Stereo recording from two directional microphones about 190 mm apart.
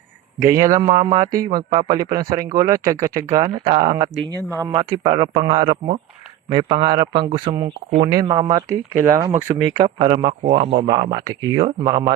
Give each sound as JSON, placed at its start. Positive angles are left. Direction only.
{"t": 0.3, "sound": "a man's voice", "side_deg": -15}
{"t": 0.9, "sound": "speech", "side_deg": -30}
{"t": 1.1, "sound": "speech", "side_deg": -20}